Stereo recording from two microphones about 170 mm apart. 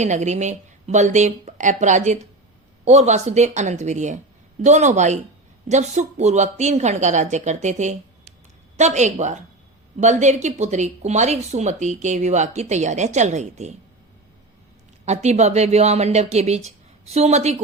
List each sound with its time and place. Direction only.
0.0 s speech: 45° right (ahead or behind)
15.0 s a woman's voice: 40° right (ahead or behind)